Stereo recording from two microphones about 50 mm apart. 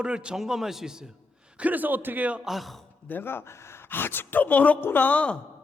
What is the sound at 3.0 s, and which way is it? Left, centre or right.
A woman's voice, left.